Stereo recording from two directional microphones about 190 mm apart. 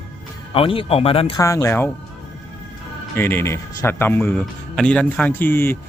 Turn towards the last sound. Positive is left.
turn(degrees=10)  # may be behind; listen again after turning